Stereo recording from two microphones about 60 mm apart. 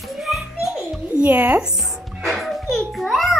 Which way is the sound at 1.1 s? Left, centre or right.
Right.